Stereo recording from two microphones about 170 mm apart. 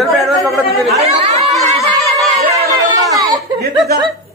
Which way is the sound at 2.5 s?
20° right (ahead or behind).